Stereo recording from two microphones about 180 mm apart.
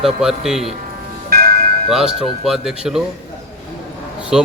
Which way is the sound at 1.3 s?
55° right (ahead or behind).